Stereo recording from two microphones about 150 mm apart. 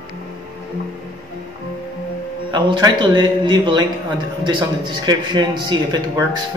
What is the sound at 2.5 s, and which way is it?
A man's voice, 30° right (ahead or behind).